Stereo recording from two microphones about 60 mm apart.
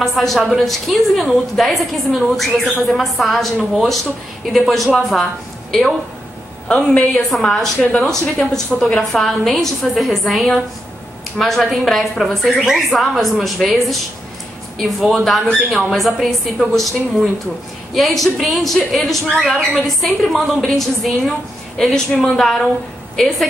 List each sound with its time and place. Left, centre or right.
0.0 s speech: centre
6.7 s a woman's voice: left
7.2 s a woman's voice: centre